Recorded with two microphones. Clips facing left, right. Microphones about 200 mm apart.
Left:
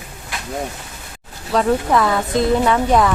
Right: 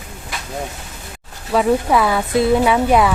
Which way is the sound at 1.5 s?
5° right (ahead or behind).